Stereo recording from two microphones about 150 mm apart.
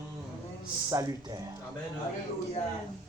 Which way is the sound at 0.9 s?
25° right (ahead or behind).